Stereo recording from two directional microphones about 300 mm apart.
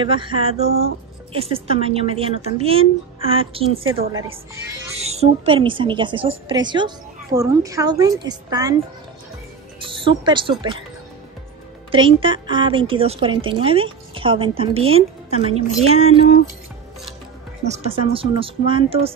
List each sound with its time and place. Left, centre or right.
0.0 s speech: centre
4.9 s a woman's voice: right
9.8 s speech: centre
11.9 s a woman's voice: centre
17.6 s a woman's voice: centre